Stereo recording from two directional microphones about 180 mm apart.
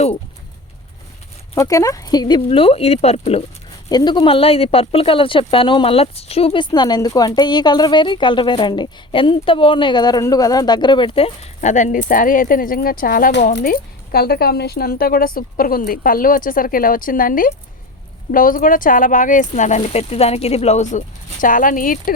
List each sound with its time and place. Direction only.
1.5 s speech: 15° left (ahead or behind); by 3.4 s 35° left (ahead or behind)
3.8 s speech: 25° left (ahead or behind); by 22.1 s 50° left (ahead or behind)